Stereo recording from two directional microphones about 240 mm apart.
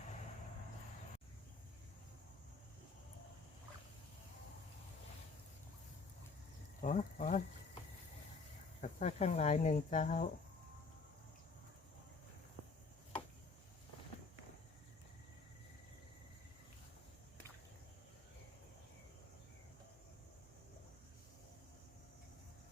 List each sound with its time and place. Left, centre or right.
6.8 s speech: left
8.8 s speech: left